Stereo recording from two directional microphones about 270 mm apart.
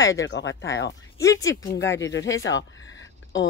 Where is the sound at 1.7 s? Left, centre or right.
Left.